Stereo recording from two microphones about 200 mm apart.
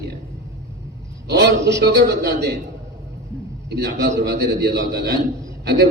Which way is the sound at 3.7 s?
55° right (ahead or behind).